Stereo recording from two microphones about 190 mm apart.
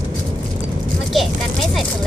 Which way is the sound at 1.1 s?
Centre (ahead or behind).